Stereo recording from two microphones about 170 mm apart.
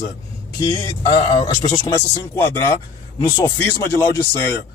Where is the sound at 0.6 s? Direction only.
20° left (ahead or behind).